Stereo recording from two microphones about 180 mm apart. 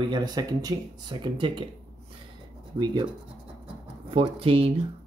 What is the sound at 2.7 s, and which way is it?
Speech, 25° right (ahead or behind).